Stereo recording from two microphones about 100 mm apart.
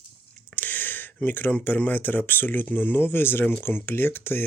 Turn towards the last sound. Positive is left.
turn(degrees=25)  # may be behind; listen again after turning